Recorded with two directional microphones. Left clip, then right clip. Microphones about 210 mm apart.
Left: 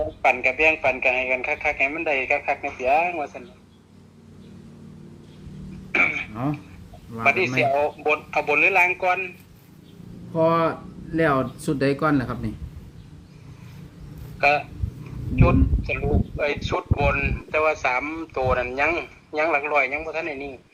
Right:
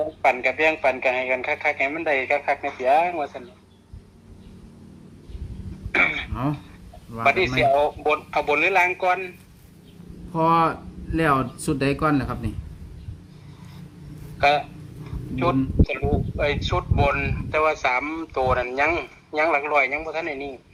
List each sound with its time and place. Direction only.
0.0 s speech: 5° right (ahead or behind)
5.9 s throat clearing: 10° right (ahead or behind)
7.2 s speech: 10° right (ahead or behind)
10.3 s speech: 15° right (ahead or behind)
14.3 s speech: 5° right (ahead or behind)
16.0 s speech: 5° right (ahead or behind)